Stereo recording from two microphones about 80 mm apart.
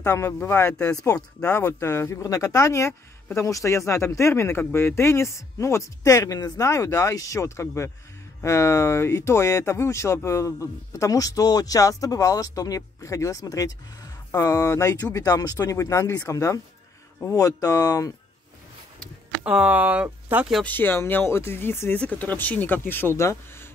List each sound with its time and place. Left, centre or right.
0.0 s speech: left
0.7 s speech: centre
0.9 s speech: left
1.4 s speech: left
19.4 s speech: centre
20.6 s speech: left